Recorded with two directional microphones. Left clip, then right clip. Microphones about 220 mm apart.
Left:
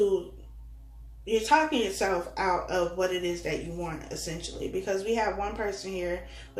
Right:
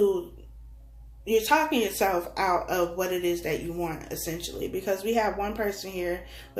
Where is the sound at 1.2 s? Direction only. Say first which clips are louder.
Right 1 dB; 45° right (ahead or behind).